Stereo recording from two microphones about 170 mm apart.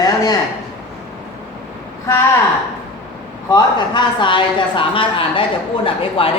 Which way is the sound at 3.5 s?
25° left (ahead or behind).